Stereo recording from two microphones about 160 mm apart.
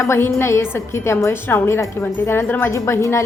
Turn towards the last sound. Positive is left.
turn(degrees=15)  # may be behind; listen again after turning